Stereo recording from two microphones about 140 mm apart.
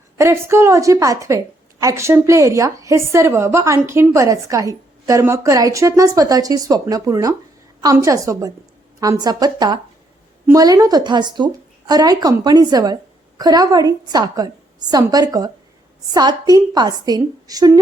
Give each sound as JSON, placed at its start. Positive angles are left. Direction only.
{"t": 0.2, "sound": "a woman's voice", "side_deg": -20}